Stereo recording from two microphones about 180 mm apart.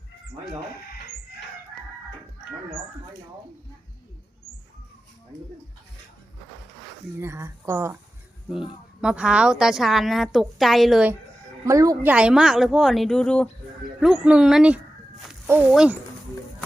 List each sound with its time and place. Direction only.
7.2 s speech: 15° right (ahead or behind)
9.0 s a woman's voice: 5° right (ahead or behind)
11.6 s speech: 20° right (ahead or behind)
12.1 s a woman's voice: 5° right (ahead or behind)
14.0 s a woman's voice: 5° right (ahead or behind)